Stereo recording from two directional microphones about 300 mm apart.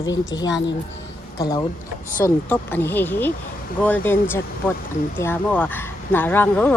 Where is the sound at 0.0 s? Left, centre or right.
Centre.